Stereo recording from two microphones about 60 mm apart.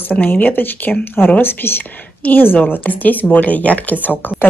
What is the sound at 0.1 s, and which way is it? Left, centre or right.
A woman's voice, left.